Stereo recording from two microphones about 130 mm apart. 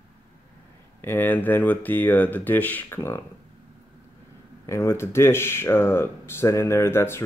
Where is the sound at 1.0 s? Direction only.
15° left (ahead or behind).